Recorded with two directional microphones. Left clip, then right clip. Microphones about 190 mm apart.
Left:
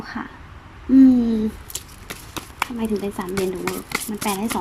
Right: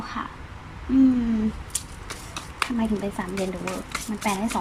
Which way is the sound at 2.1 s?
45° left (ahead or behind).